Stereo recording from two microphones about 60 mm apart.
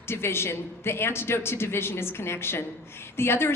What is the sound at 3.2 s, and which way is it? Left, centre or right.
Speech, left.